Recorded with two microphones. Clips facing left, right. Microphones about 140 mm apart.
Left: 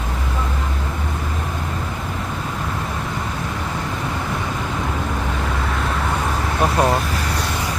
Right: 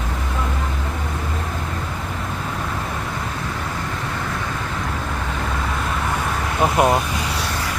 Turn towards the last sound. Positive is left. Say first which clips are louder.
# right 1 dB
turn(degrees=-20)  # may be behind; listen again after turning